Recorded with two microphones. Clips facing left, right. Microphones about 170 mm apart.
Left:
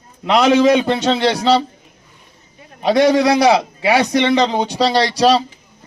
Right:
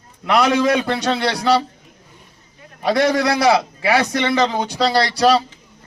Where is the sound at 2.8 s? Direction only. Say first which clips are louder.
Left 4 dB; 20° left (ahead or behind).